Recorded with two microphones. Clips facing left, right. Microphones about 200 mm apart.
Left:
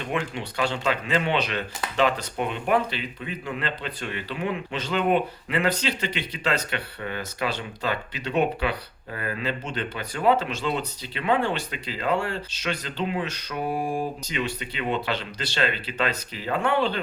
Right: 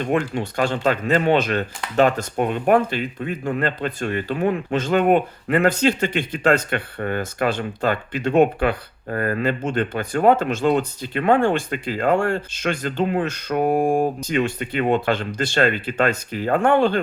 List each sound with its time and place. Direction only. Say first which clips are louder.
0.0 s speech: right 7 dB; 45° right (ahead or behind)